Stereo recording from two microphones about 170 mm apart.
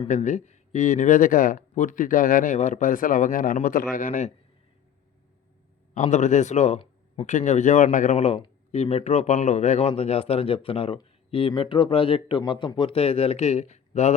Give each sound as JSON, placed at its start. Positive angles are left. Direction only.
{"t": 0.1, "sound": "speech", "side_deg": 45}
{"t": 5.9, "sound": "speech", "side_deg": 45}